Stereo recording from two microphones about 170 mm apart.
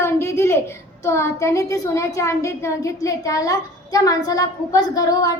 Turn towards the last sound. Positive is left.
turn(degrees=20)  # may be behind; listen again after turning